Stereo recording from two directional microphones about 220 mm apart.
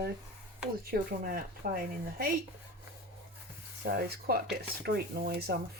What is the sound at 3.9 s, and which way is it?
Speech, 45° right (ahead or behind).